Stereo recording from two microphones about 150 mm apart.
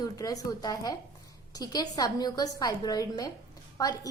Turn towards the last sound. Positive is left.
turn(degrees=25)  # may be behind; listen again after turning